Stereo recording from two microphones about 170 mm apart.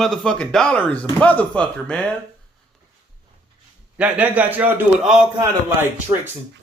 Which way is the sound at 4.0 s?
10° right (ahead or behind).